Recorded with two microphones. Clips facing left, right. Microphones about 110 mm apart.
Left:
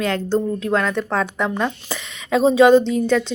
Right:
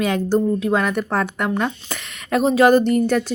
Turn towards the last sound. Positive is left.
turn(degrees=-10)  # may be behind; listen again after turning